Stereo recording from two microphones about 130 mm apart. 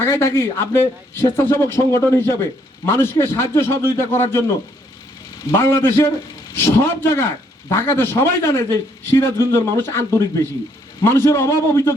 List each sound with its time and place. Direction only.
0.0 s a man's voice: 20° left (ahead or behind)
5.5 s a man's voice: 20° left (ahead or behind)